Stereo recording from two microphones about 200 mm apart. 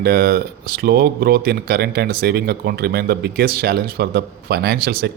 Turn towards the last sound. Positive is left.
turn(degrees=-50)  # may be behind; listen again after turning